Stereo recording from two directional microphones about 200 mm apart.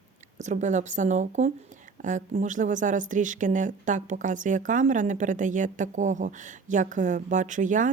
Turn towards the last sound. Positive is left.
turn(degrees=-40)  # may be behind; listen again after turning